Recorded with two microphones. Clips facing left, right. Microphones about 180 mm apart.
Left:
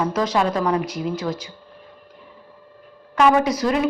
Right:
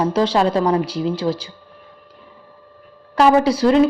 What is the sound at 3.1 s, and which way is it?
Speech, 30° right (ahead or behind).